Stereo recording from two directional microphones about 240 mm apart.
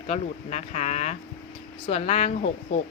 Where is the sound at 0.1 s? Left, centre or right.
Left.